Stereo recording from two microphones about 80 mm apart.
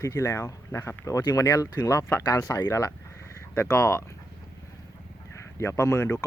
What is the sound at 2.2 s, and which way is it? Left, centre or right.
Speech, left.